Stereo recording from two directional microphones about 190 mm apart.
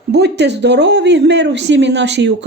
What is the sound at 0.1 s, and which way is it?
Speech, 65° right (ahead or behind).